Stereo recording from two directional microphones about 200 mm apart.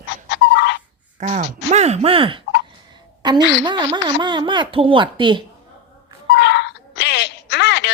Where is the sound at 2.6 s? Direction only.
20° right (ahead or behind).